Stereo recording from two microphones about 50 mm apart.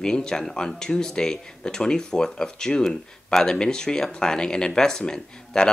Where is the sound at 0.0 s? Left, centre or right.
Centre.